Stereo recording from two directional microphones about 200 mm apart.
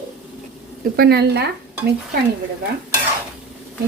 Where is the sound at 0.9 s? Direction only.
50° right (ahead or behind).